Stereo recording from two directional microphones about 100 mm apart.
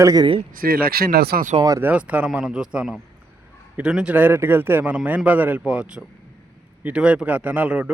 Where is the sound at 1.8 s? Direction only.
15° right (ahead or behind).